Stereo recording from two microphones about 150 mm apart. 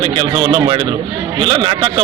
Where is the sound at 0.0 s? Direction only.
35° right (ahead or behind).